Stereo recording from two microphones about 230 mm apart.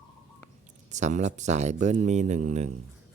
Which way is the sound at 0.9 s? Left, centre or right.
Right.